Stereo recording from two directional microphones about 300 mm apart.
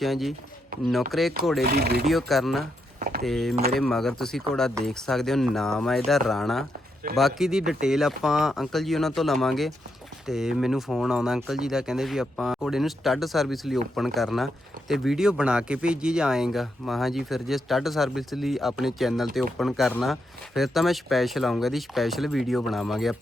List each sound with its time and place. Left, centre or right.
0.0 s speech: centre
1.6 s speech: right
2.0 s speech: centre
3.5 s speech: right
3.8 s speech: centre